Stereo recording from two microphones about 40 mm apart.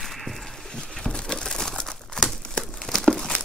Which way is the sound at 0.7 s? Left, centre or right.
Centre.